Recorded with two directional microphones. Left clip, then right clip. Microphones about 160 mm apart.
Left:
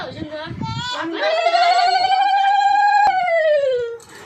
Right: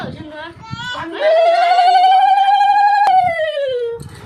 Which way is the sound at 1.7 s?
70° right (ahead or behind).